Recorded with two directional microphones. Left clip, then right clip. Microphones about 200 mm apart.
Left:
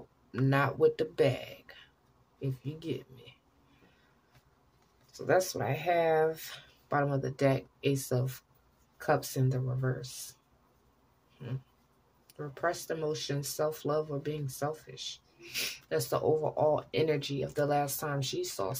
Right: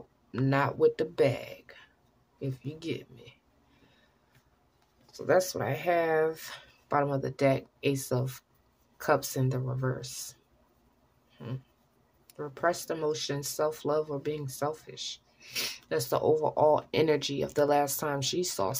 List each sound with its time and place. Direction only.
0.3 s speech: 15° right (ahead or behind)
5.1 s speech: 15° right (ahead or behind)
12.3 s speech: 20° right (ahead or behind)